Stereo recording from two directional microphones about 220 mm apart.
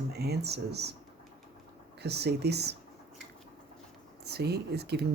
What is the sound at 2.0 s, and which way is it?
Speech, 50° right (ahead or behind).